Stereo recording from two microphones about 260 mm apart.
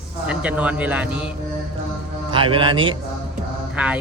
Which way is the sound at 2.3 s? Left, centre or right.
Centre.